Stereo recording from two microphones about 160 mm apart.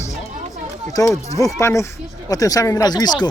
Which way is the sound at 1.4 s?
20° left (ahead or behind).